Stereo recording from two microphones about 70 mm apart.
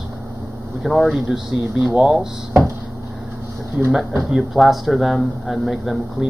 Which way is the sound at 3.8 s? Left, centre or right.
Centre.